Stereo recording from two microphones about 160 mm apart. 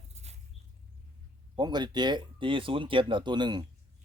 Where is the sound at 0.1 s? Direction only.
40° right (ahead or behind).